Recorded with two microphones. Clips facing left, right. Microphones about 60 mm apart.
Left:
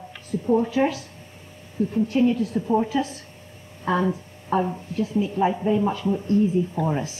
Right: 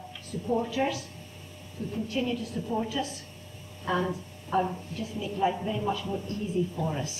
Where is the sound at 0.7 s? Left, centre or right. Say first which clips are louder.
Left 6 dB; left.